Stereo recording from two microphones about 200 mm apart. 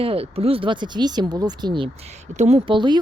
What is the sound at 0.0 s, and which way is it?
Speech, 30° right (ahead or behind).